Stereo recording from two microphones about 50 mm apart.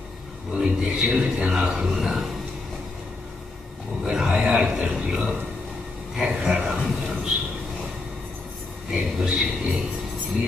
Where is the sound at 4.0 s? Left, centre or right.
Centre.